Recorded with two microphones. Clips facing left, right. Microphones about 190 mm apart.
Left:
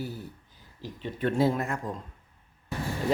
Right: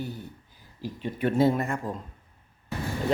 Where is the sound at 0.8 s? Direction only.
10° right (ahead or behind).